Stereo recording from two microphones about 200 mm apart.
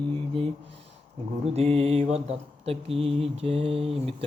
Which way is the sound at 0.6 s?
60° right (ahead or behind).